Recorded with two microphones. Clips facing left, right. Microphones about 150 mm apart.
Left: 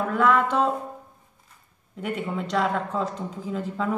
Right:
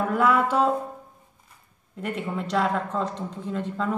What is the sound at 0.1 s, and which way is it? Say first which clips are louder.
Speech: left 1 dB; 5° right (ahead or behind).